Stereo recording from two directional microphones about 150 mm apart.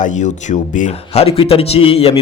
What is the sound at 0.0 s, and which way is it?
Speech, 55° left (ahead or behind).